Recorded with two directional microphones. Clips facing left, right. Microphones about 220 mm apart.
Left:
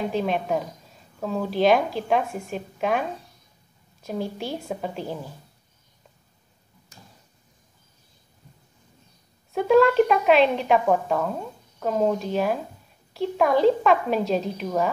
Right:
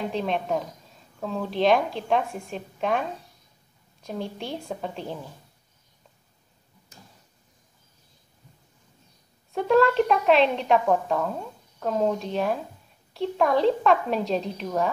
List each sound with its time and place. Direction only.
0.1 s a woman's voice: 5° left (ahead or behind)
9.5 s a woman's voice: centre (ahead or behind)